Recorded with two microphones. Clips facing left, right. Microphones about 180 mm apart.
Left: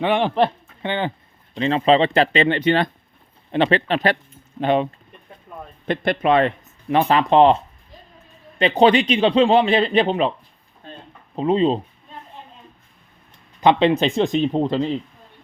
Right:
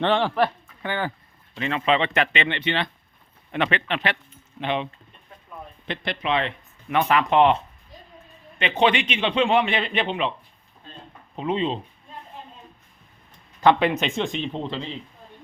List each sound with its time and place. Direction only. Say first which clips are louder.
0.0 s speech: left 3 dB; 15° left (ahead or behind)
1.5 s speech: left 6 dB; 30° left (ahead or behind)
5.9 s speech: left 8 dB; 50° left (ahead or behind)
6.8 s speech: left 4 dB; 30° left (ahead or behind)
8.5 s speech: left 6 dB; 35° left (ahead or behind)
11.3 s speech: left 7 dB; 35° left (ahead or behind)
13.6 s speech: left 3 dB; 20° left (ahead or behind); by 14.9 s 45° left (ahead or behind)